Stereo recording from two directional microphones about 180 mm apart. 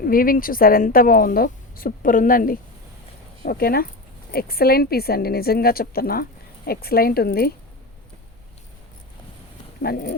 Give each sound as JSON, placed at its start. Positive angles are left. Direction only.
{"t": 0.0, "sound": "a woman's voice", "side_deg": 50}
{"t": 9.8, "sound": "a woman's voice", "side_deg": 60}